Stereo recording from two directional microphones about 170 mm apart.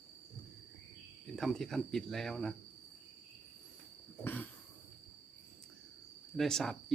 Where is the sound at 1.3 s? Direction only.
Centre (ahead or behind).